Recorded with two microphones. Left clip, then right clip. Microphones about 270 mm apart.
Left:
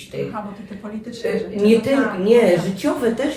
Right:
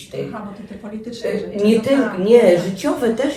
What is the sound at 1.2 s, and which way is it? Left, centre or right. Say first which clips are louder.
Speech: left 1 dB; centre.